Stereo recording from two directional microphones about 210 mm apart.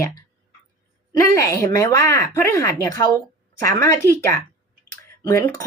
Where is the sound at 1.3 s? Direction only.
15° left (ahead or behind).